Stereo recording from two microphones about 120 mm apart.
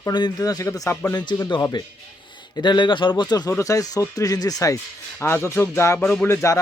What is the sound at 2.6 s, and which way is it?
Speech, 40° left (ahead or behind).